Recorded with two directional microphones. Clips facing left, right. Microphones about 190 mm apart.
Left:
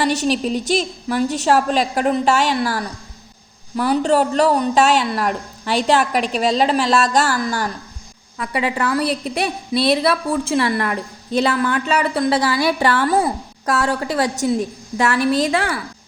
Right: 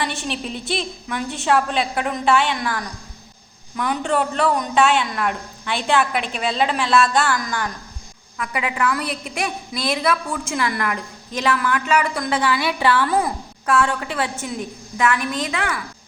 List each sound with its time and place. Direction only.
0.0 s a woman's voice: 40° left (ahead or behind)